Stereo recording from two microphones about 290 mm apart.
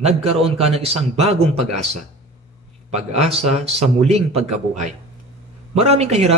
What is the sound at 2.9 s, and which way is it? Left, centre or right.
A man's voice, right.